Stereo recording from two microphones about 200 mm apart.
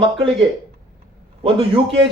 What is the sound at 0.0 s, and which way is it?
Speech, 25° right (ahead or behind).